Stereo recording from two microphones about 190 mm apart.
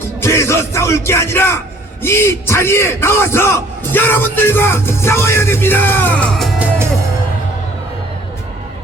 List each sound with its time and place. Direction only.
0.2 s a man's voice: 15° left (ahead or behind)